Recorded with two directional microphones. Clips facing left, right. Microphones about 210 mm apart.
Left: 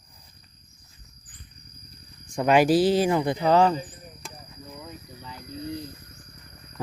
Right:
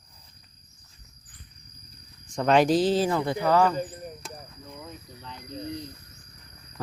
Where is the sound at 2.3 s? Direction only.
10° left (ahead or behind); by 3.7 s 25° left (ahead or behind).